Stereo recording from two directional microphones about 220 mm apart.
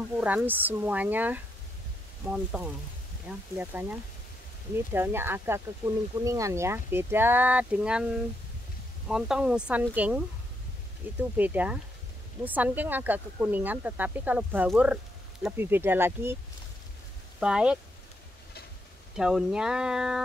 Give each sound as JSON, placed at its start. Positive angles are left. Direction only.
{"t": 0.2, "sound": "speech", "side_deg": -5}
{"t": 17.4, "sound": "speech", "side_deg": -5}
{"t": 19.1, "sound": "speech", "side_deg": -5}